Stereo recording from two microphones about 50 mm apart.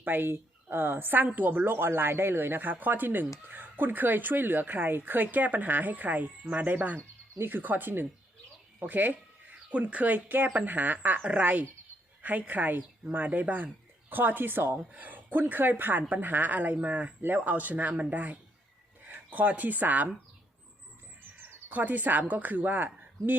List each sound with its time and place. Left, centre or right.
0.0 s a woman's voice: right
7.3 s a woman's voice: right
14.9 s a woman's voice: right
21.7 s a woman's voice: right